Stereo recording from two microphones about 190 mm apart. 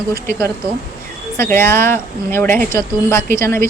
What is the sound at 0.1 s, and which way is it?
A woman's voice, 15° left (ahead or behind).